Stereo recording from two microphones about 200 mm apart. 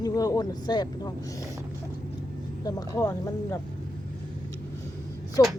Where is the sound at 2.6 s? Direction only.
15° left (ahead or behind).